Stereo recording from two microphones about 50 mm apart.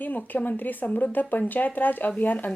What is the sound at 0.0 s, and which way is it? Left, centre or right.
A woman's voice, left.